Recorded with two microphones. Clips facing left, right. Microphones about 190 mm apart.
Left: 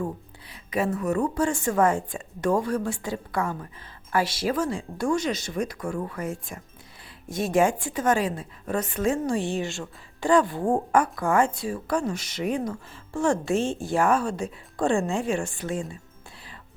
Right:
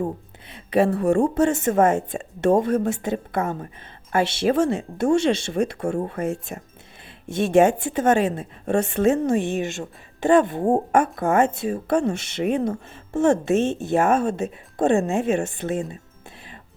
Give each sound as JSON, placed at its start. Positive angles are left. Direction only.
{"t": 0.4, "sound": "a woman's voice", "side_deg": -30}